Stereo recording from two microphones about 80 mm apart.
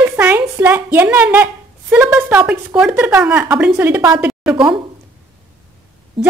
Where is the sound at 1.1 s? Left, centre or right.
Right.